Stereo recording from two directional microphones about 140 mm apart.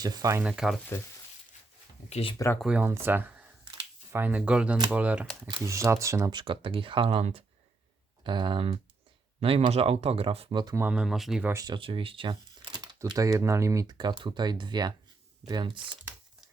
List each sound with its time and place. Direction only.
0.0 s speech: 30° right (ahead or behind)
0.3 s speech: 5° right (ahead or behind)
2.0 s speech: 50° left (ahead or behind)
2.6 s speech: 5° right (ahead or behind)
2.8 s speech: 15° right (ahead or behind)
5.6 s speech: 20° right (ahead or behind)
6.3 s speech: 35° right (ahead or behind)
8.2 s speech: 35° right (ahead or behind)
10.8 s speech: 10° right (ahead or behind)
11.4 s speech: 25° right (ahead or behind)
11.8 s speech: 40° right (ahead or behind)